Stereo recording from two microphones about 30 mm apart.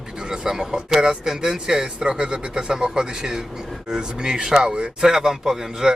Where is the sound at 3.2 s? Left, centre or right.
Centre; by 4.9 s right.